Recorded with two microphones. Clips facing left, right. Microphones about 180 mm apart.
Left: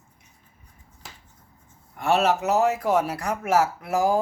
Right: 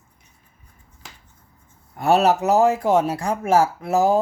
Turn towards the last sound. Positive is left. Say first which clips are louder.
# right 4 dB
turn(degrees=-25)  # may be behind; listen again after turning